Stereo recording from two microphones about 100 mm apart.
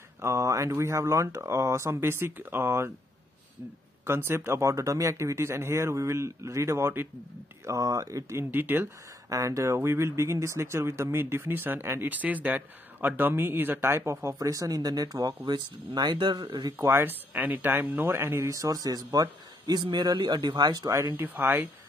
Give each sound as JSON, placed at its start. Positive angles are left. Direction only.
{"t": 0.2, "sound": "speech", "side_deg": -30}
{"t": 4.0, "sound": "speech", "side_deg": -25}
{"t": 8.5, "sound": "speech", "side_deg": -20}
{"t": 9.3, "sound": "speech", "side_deg": -35}
{"t": 16.7, "sound": "speech", "side_deg": -25}
{"t": 20.9, "sound": "speech", "side_deg": -25}